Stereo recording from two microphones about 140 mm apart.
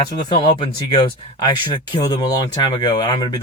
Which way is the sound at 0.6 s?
35° left (ahead or behind).